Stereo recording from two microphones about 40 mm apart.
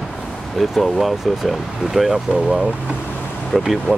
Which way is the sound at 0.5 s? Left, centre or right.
Centre.